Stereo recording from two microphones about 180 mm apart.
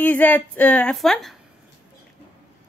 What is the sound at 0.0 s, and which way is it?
A woman's voice, 10° left (ahead or behind).